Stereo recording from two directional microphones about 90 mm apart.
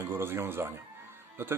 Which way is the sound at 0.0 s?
25° right (ahead or behind).